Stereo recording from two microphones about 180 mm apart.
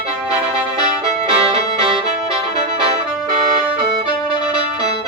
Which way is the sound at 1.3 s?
35° right (ahead or behind).